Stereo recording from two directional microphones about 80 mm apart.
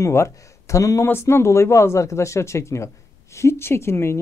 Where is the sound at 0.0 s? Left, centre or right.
Left.